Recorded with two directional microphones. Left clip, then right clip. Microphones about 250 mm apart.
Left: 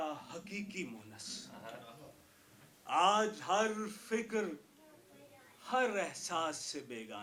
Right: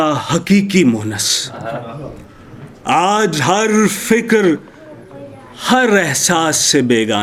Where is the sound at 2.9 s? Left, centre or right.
Right.